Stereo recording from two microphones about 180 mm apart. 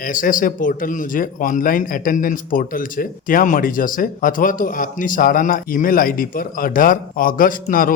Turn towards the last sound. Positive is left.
turn(degrees=50)  # may be behind; listen again after turning